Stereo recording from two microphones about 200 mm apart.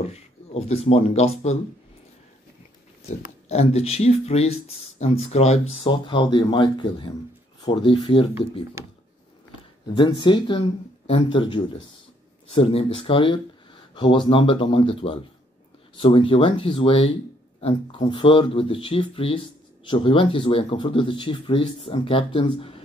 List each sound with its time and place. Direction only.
0.0 s speech: 30° left (ahead or behind)
3.4 s speech: 30° left (ahead or behind)
8.8 s speech: 15° right (ahead or behind)
10.2 s speech: 25° left (ahead or behind)